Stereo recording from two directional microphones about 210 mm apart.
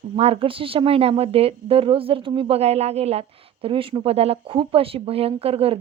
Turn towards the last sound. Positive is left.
turn(degrees=-25)  # may be behind; listen again after turning